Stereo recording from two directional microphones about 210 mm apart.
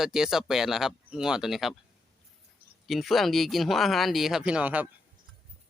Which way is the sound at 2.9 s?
Centre (ahead or behind).